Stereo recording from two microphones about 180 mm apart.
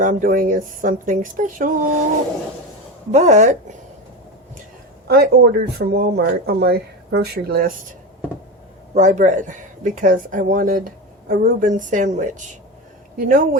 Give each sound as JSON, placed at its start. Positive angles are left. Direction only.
{"t": 0.0, "sound": "speech", "side_deg": -50}
{"t": 3.1, "sound": "speech", "side_deg": -40}
{"t": 5.0, "sound": "speech", "side_deg": -60}
{"t": 9.0, "sound": "speech", "side_deg": -45}